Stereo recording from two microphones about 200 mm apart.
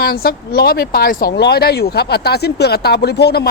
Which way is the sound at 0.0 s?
50° left (ahead or behind).